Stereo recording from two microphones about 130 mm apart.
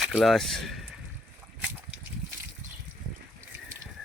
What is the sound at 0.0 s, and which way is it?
Speech, centre (ahead or behind).